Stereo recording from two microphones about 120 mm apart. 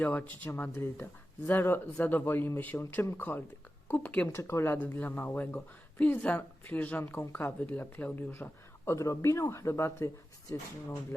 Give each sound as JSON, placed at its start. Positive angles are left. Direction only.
{"t": 0.0, "sound": "speech", "side_deg": 15}